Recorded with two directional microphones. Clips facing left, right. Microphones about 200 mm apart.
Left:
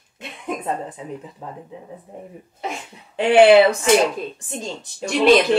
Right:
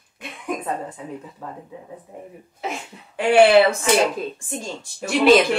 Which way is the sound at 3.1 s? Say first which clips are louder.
Left 2 dB; 20° left (ahead or behind).